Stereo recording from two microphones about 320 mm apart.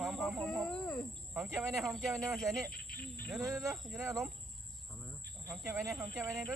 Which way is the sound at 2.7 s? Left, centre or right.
Left.